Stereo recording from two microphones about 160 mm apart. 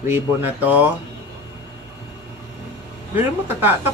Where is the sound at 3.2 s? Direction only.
15° right (ahead or behind).